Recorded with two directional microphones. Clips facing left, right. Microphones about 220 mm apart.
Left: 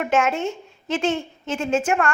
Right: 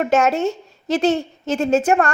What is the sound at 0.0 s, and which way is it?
A woman's voice, 40° right (ahead or behind).